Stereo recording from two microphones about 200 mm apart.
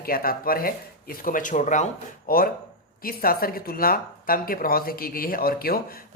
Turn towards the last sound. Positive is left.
turn(degrees=50)  # may be behind; listen again after turning